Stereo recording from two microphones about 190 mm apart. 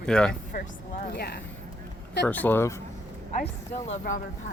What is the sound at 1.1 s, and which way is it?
Speech, 60° left (ahead or behind).